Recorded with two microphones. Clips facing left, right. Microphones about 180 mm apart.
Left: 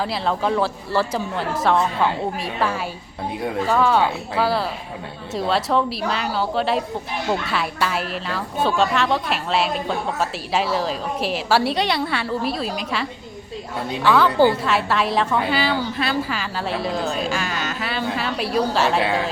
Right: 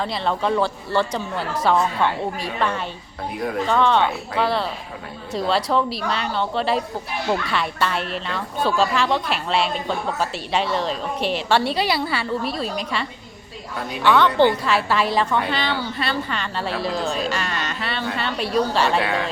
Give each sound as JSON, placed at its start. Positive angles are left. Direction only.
{"t": 0.0, "sound": "speech", "side_deg": 0}
{"t": 19.0, "sound": "speech", "side_deg": 25}